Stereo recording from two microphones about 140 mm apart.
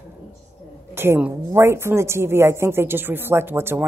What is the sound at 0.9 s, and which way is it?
A woman's voice, 15° right (ahead or behind).